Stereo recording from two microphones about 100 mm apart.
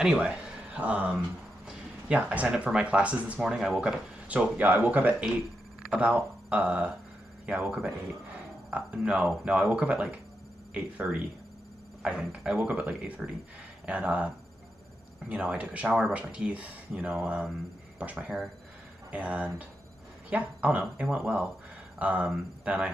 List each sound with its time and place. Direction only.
0.0 s speech: 10° right (ahead or behind)